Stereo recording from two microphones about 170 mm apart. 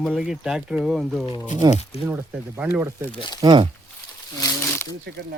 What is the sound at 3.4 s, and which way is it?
Speech, 25° right (ahead or behind).